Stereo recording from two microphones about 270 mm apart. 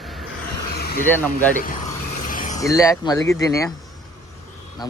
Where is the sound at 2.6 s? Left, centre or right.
Centre.